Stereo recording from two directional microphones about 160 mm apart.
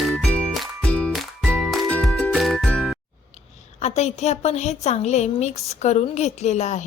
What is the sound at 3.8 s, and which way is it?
A woman's voice, 45° left (ahead or behind).